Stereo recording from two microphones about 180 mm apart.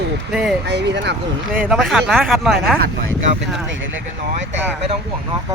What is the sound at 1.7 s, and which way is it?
Speech, centre (ahead or behind).